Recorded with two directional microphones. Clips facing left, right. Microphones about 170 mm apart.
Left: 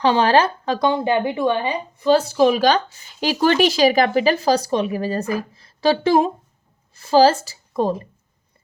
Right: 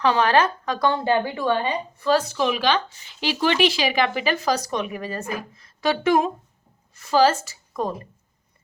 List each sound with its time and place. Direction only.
0.0 s speech: 30° left (ahead or behind)
0.8 s a woman's voice: 15° left (ahead or behind); by 7.9 s 30° left (ahead or behind)